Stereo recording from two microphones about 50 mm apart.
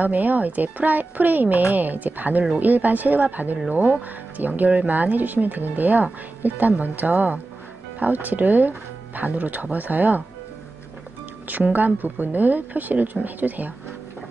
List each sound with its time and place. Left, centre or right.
0.0 s speech: right
11.4 s speech: right